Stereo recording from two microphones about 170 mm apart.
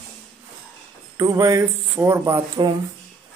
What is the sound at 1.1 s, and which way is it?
Speech, 20° right (ahead or behind).